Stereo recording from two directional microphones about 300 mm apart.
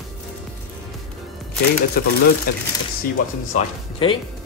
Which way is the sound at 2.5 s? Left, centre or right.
Left.